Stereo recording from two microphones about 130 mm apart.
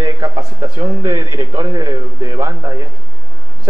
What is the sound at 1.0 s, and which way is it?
Speech, 25° right (ahead or behind).